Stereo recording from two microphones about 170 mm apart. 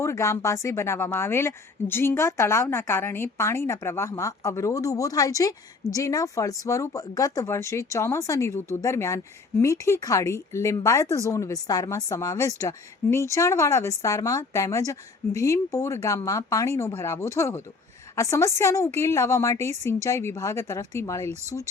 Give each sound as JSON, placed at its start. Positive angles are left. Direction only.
{"t": 0.0, "sound": "a woman's voice", "side_deg": 15}